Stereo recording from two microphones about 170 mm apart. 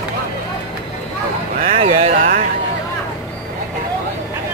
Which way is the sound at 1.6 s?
40° right (ahead or behind).